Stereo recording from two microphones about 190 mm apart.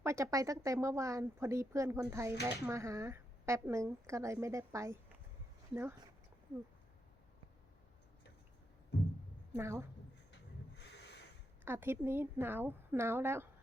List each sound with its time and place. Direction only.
0.0 s a woman's voice: 15° right (ahead or behind)
8.9 s a sound: 60° left (ahead or behind)
9.5 s a woman's voice: 15° right (ahead or behind)
11.6 s a woman's voice: 10° right (ahead or behind)